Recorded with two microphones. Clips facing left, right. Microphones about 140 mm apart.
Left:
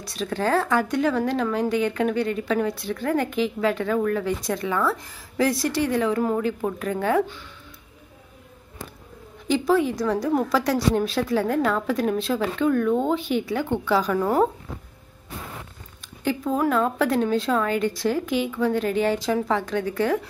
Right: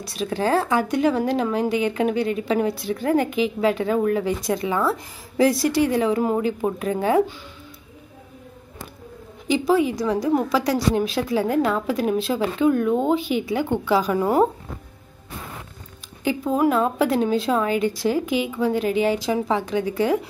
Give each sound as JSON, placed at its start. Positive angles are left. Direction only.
{"t": 0.0, "sound": "speech", "side_deg": -10}
{"t": 9.5, "sound": "speech", "side_deg": -5}
{"t": 16.3, "sound": "speech", "side_deg": -15}